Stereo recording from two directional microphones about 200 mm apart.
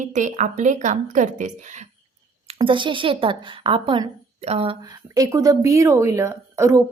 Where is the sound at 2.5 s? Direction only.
25° right (ahead or behind).